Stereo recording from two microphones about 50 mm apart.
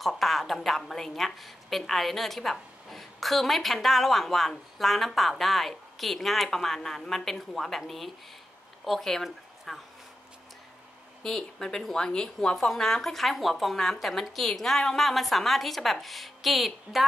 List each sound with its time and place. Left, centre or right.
0.0 s speech: centre
11.2 s speech: centre